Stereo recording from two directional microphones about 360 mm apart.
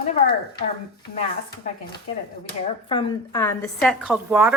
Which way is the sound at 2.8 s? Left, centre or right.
Centre.